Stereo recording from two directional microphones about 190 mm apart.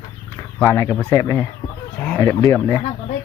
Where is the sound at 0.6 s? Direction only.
15° left (ahead or behind).